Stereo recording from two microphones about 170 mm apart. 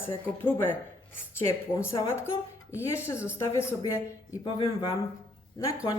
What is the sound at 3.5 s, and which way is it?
Speech, 15° left (ahead or behind).